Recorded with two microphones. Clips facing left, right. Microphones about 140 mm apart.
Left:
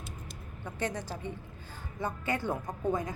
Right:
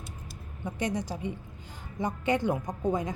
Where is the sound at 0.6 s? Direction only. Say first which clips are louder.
Right 4 dB; 15° right (ahead or behind).